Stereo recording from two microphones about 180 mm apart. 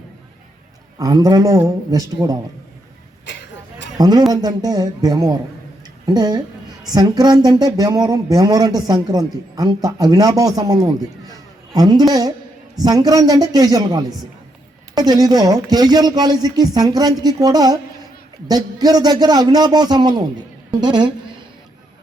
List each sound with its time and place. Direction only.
0.9 s a woman's voice: 20° right (ahead or behind)
3.9 s a man's voice: 20° right (ahead or behind)